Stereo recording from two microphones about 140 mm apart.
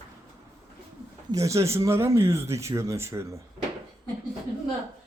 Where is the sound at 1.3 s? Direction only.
20° right (ahead or behind).